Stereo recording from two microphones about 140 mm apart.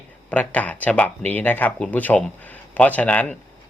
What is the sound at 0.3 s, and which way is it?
Speech, 10° left (ahead or behind).